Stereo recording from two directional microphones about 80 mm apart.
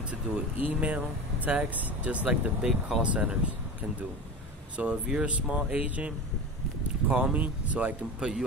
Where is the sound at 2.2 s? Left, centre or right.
Centre.